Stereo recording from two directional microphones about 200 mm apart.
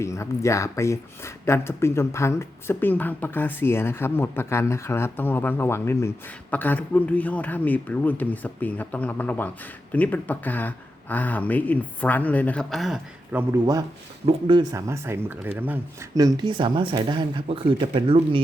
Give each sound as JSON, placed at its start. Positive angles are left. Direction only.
{"t": 0.0, "sound": "speech", "side_deg": 15}
{"t": 13.5, "sound": "speech", "side_deg": -20}